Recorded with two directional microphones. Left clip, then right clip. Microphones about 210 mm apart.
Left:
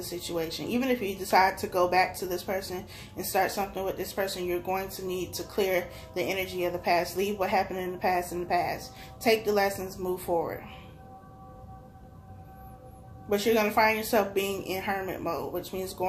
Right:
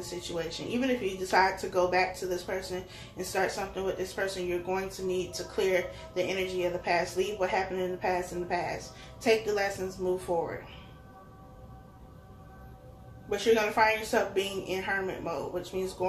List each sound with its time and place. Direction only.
0.4 s speech: 45° left (ahead or behind)
13.3 s speech: 45° left (ahead or behind)